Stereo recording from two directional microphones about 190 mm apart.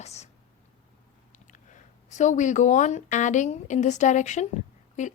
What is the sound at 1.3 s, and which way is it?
Speech, 40° left (ahead or behind).